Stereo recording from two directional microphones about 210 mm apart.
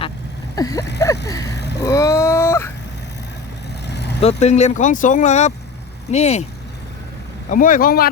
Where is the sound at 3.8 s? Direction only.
55° left (ahead or behind).